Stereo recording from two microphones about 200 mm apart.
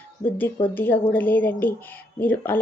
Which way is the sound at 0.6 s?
10° left (ahead or behind).